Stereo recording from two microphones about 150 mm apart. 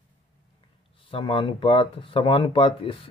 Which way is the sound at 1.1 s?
35° left (ahead or behind).